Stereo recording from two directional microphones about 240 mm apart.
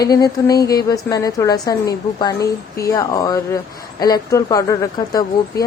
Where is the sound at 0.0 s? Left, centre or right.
Centre.